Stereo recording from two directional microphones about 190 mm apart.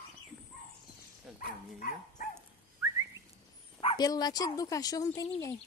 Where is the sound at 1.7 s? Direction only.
45° left (ahead or behind).